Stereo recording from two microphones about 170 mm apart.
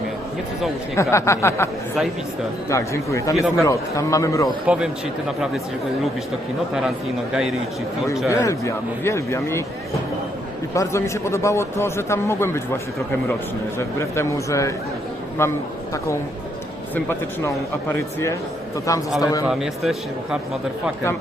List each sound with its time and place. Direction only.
0.9 s a man's voice: 15° left (ahead or behind)
4.4 s a man's voice: 5° right (ahead or behind)
8.3 s a man's voice: 15° left (ahead or behind)
10.8 s a man's voice: 15° left (ahead or behind)
16.9 s a man's voice: 15° left (ahead or behind)
19.5 s a man's voice: centre (ahead or behind)